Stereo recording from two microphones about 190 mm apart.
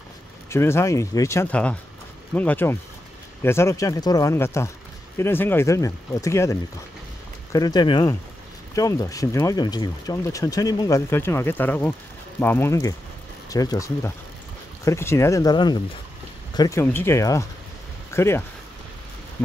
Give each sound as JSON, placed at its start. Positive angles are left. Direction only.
{"t": 0.5, "sound": "speech", "side_deg": 15}